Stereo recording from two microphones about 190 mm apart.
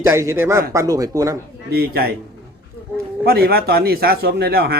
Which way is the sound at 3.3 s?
55° right (ahead or behind).